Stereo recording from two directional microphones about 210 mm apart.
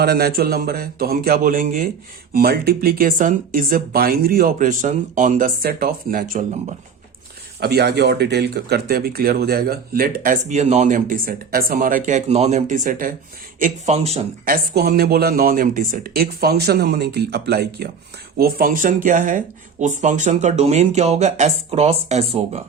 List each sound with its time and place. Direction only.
0.0 s speech: 50° right (ahead or behind)
7.6 s speech: 50° right (ahead or behind); by 14.3 s 30° right (ahead or behind)
14.4 s speech: 40° right (ahead or behind)